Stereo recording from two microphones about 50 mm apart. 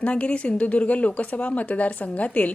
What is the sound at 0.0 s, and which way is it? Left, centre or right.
A woman's voice, left.